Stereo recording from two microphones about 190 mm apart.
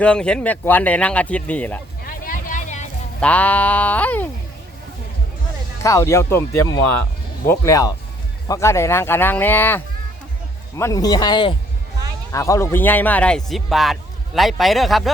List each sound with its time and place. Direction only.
0.0 s speech: 5° left (ahead or behind)
2.0 s a sound: 45° left (ahead or behind)
3.2 s speech: 10° left (ahead or behind)
5.8 s a man's voice: 15° left (ahead or behind); by 15.1 s centre (ahead or behind)